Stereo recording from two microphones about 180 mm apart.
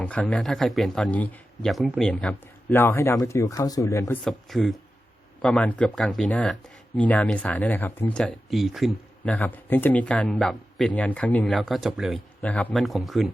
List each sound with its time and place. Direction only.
0.0 s speech: 10° left (ahead or behind)
4.2 s speech: centre (ahead or behind)